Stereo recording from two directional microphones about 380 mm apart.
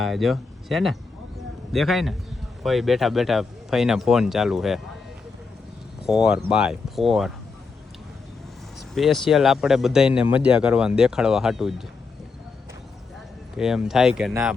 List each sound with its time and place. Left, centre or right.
0.0 s speech: centre
6.1 s speech: centre
9.0 s speech: centre
13.6 s speech: centre